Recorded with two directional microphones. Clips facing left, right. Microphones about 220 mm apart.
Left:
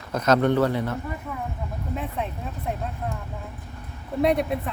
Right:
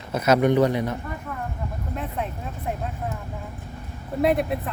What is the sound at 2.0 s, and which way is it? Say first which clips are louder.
Speech: right 1 dB; centre (ahead or behind).